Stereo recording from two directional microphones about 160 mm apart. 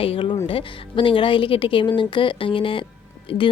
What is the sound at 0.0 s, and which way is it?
A woman's voice, 35° left (ahead or behind).